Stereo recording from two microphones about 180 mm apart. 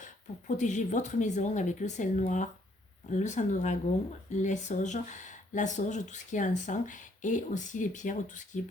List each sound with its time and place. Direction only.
0.0 s speech: 45° left (ahead or behind)